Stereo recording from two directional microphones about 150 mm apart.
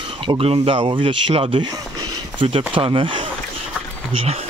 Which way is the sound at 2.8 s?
35° right (ahead or behind).